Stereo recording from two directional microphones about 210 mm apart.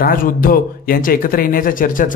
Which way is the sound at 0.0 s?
40° left (ahead or behind).